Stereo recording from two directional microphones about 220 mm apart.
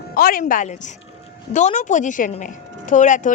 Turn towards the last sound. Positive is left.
turn(degrees=35)  # may be behind; listen again after turning